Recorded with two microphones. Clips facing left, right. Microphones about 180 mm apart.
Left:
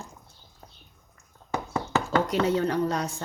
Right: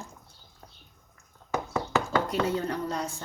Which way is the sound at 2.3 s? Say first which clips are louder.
Left 4 dB; 75° left (ahead or behind).